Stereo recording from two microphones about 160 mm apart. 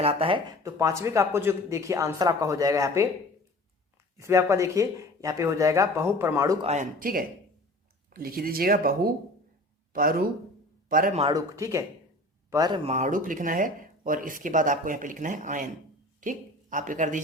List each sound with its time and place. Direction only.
0.0 s speech: 40° right (ahead or behind)
0.6 s speech: 20° right (ahead or behind)
4.2 s speech: 20° right (ahead or behind)
6.6 s speech: 40° right (ahead or behind)
7.0 s a man's voice: 65° right (ahead or behind)
11.3 s speech: 20° right (ahead or behind)
12.9 s speech: 50° right (ahead or behind)